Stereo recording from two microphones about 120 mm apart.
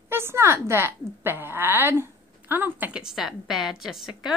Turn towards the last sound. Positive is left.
turn(degrees=-5)  # may be behind; listen again after turning